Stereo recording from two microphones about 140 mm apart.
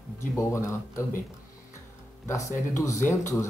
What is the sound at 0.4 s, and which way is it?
Speech, 20° left (ahead or behind).